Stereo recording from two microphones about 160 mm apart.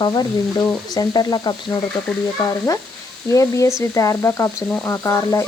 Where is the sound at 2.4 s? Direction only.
20° left (ahead or behind).